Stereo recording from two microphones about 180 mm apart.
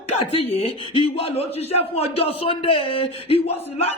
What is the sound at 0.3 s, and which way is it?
A man's voice, 35° left (ahead or behind).